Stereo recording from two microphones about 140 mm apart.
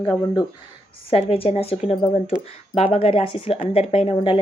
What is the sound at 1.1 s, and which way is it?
A woman's voice, 40° left (ahead or behind).